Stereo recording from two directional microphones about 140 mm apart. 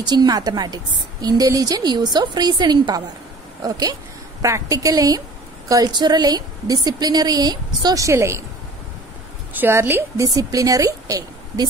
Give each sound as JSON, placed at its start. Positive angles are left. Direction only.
{"t": 0.0, "sound": "a woman's voice", "side_deg": -30}
{"t": 9.5, "sound": "a woman's voice", "side_deg": -15}